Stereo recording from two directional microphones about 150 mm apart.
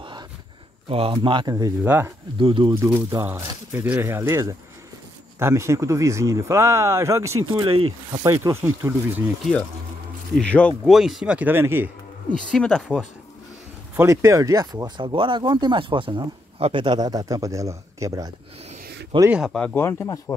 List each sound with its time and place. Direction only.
0.8 s speech: 40° right (ahead or behind)
1.8 s speech: 15° right (ahead or behind)
2.4 s speech: 35° right (ahead or behind)
2.8 s speech: 20° right (ahead or behind)
10.3 s speech: 10° left (ahead or behind)
10.9 s speech: centre (ahead or behind)
12.4 s speech: 5° left (ahead or behind)
13.9 s speech: 20° right (ahead or behind)
19.3 s speech: centre (ahead or behind); by 20.3 s 15° left (ahead or behind)